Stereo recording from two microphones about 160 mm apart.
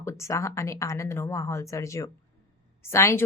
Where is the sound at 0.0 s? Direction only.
15° left (ahead or behind).